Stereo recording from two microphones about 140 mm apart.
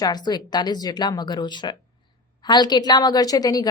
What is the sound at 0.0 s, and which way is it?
A woman's voice, 30° left (ahead or behind).